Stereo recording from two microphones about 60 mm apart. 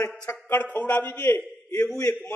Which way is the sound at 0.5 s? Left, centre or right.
Left.